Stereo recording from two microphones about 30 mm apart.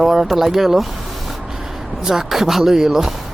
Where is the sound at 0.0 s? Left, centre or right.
Centre.